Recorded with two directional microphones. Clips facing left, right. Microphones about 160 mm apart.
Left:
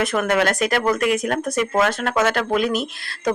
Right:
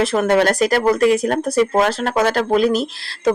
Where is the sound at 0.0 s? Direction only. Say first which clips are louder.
Right 4 dB; 30° right (ahead or behind).